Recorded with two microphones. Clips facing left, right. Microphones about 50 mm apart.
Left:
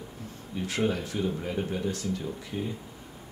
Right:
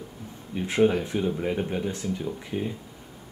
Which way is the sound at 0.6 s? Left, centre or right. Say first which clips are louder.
Right 6 dB; right.